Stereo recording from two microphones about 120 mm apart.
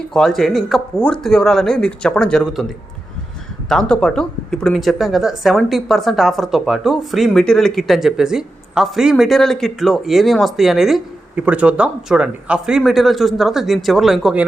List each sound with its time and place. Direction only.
0.1 s speech: 5° left (ahead or behind)
3.7 s speech: 5° left (ahead or behind)